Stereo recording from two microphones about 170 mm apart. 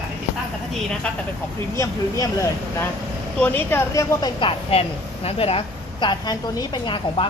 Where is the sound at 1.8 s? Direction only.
20° left (ahead or behind).